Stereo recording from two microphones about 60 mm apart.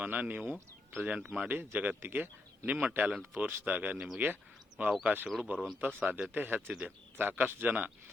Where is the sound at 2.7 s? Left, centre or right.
Right.